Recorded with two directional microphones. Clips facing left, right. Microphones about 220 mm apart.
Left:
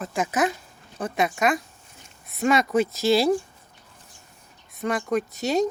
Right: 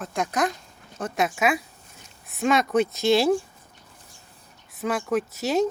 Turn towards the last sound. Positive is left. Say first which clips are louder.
# even
turn(degrees=0)  # may be behind; listen again after turning